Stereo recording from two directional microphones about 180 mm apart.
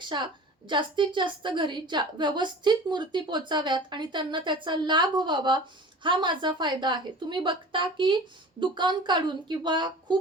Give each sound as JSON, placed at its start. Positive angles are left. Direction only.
{"t": 0.0, "sound": "a woman's voice", "side_deg": -25}